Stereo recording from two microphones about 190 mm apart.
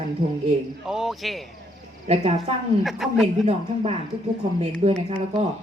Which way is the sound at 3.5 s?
30° right (ahead or behind).